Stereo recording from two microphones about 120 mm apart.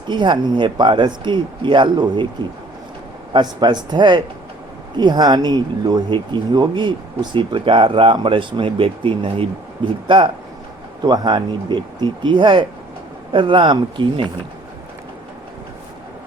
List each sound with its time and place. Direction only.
0.1 s speech: 40° right (ahead or behind)
3.3 s speech: 35° right (ahead or behind)
11.0 s speech: 35° right (ahead or behind)